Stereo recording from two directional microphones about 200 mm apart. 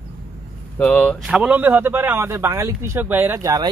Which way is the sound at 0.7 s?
5° left (ahead or behind).